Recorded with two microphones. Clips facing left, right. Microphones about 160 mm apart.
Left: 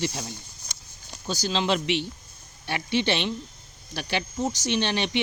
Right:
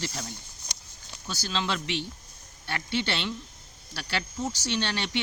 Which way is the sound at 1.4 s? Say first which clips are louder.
Left 5 dB; 20° left (ahead or behind).